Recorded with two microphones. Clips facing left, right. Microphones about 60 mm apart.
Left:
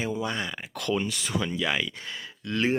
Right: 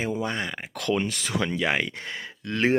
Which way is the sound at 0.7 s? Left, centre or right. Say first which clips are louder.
Right 2 dB; right.